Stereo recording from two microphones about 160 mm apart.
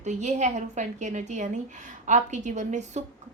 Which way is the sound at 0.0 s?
45° right (ahead or behind).